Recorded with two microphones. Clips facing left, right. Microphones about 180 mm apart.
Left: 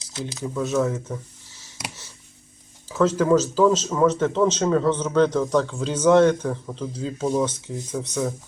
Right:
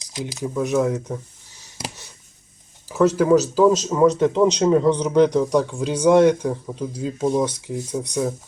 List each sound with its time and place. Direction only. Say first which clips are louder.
0.0 s a man's voice: right 2 dB; 15° right (ahead or behind)
1.0 s a sound: right 3 dB; 15° right (ahead or behind)
2.9 s a man's voice: right 3 dB; 10° right (ahead or behind)